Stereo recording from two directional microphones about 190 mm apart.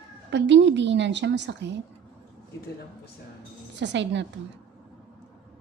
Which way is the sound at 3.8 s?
70° right (ahead or behind).